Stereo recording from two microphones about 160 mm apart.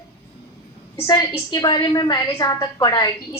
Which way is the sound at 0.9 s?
25° left (ahead or behind).